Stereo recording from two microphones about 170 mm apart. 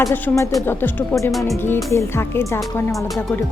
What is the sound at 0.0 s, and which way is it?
Speech, 20° left (ahead or behind).